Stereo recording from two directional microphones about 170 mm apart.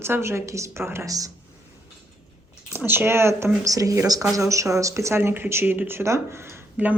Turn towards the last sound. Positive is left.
turn(degrees=-10)  # may be behind; listen again after turning